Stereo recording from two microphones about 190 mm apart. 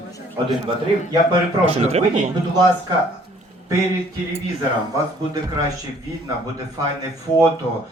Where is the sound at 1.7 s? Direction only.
35° right (ahead or behind).